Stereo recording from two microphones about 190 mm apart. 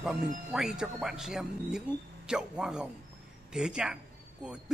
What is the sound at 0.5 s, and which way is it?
A man's voice, centre (ahead or behind).